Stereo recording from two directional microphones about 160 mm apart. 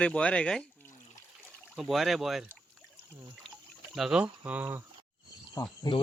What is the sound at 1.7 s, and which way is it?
Speech, centre (ahead or behind).